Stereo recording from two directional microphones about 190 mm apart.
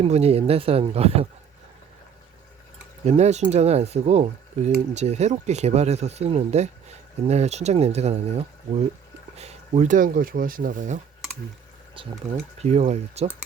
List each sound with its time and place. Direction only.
0.0 s speech: 35° right (ahead or behind)
3.1 s speech: 35° right (ahead or behind)
12.6 s speech: 35° right (ahead or behind)